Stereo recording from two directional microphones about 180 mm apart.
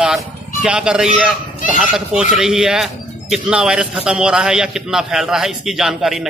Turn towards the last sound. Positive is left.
turn(degrees=0)  # may be behind; listen again after turning